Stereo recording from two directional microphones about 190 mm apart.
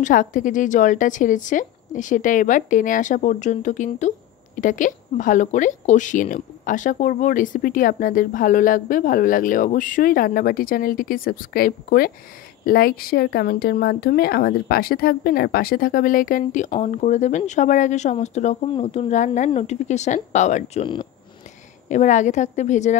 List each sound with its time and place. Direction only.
0.0 s a woman's voice: 45° left (ahead or behind); by 21.1 s 25° left (ahead or behind)
21.8 s a woman's voice: 40° left (ahead or behind)